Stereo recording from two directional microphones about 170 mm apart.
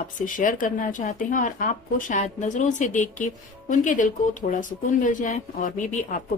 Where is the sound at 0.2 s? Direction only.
50° left (ahead or behind).